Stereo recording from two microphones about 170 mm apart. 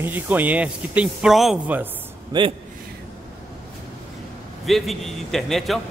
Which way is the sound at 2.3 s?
25° right (ahead or behind).